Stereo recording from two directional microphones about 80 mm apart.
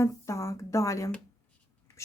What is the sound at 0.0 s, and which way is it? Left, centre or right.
A woman's voice, left.